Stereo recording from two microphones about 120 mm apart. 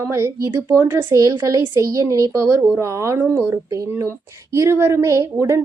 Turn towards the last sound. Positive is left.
turn(degrees=-25)  # may be behind; listen again after turning